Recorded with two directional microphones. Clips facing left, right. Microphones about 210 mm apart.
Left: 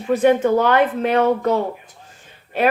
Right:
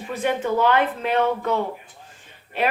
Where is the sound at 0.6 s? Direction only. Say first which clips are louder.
Left 4 dB; 45° left (ahead or behind).